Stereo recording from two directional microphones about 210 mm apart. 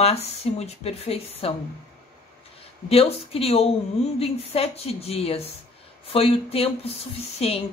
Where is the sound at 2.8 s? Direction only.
30° left (ahead or behind).